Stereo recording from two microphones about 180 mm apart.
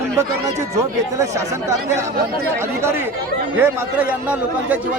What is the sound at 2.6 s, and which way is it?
A man's voice, 15° right (ahead or behind).